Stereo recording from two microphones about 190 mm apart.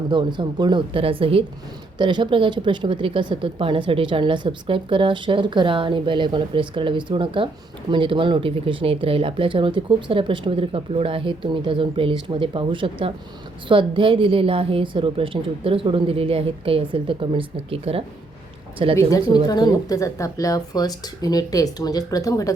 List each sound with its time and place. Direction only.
0.1 s speech: 25° right (ahead or behind)
18.9 s speech: 15° left (ahead or behind)